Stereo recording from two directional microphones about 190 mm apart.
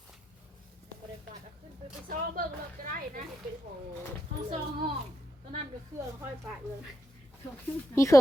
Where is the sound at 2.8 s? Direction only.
50° right (ahead or behind).